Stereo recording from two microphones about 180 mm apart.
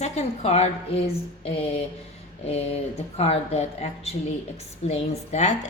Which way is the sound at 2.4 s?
35° left (ahead or behind).